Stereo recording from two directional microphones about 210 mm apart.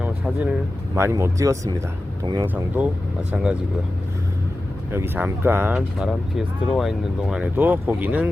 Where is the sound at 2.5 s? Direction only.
10° right (ahead or behind).